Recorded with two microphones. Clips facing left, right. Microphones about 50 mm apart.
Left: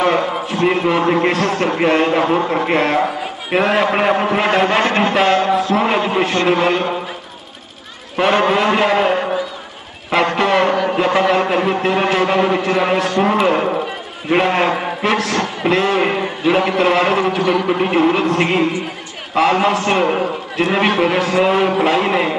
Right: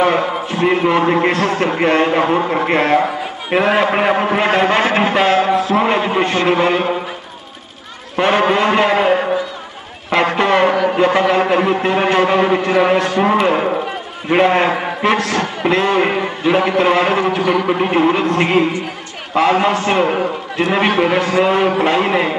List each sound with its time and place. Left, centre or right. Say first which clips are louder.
0.0 s a man's voice: right 1 dB; centre
8.2 s a man's voice: right 1 dB; centre